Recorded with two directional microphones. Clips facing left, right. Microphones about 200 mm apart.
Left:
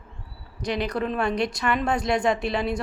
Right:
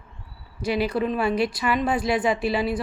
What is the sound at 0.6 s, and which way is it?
A woman's voice, 5° right (ahead or behind).